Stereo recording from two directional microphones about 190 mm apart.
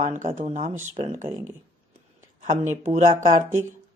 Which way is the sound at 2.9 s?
35° right (ahead or behind).